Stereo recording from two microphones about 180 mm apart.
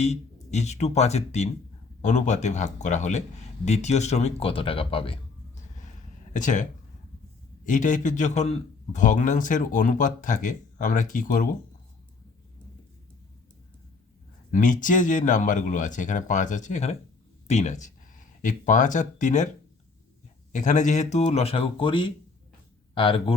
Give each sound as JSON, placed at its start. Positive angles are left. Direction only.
{"t": 0.5, "sound": "speech", "side_deg": 40}
{"t": 6.3, "sound": "a man's voice", "side_deg": 45}
{"t": 14.5, "sound": "a man's voice", "side_deg": 45}
{"t": 20.5, "sound": "speech", "side_deg": 45}